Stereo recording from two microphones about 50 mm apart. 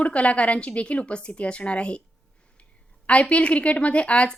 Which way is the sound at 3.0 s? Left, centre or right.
Left.